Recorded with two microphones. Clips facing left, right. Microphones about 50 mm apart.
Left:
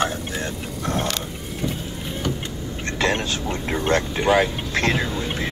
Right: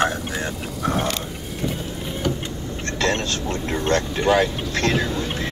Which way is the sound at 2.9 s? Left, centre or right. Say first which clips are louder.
Even; centre.